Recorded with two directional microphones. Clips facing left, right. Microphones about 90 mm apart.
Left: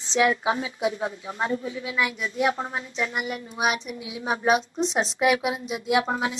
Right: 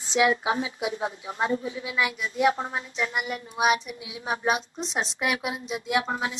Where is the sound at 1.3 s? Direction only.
30° right (ahead or behind).